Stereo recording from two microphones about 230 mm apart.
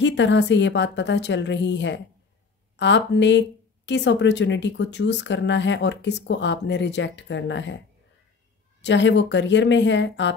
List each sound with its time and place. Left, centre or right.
0.0 s speech: left
8.8 s speech: left